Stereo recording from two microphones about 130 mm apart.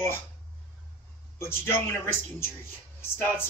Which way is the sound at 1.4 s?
20° left (ahead or behind).